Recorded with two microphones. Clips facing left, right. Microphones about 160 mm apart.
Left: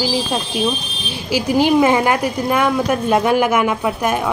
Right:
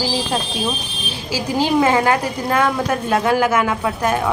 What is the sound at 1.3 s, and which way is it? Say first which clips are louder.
Speech: left 3 dB; 15° left (ahead or behind).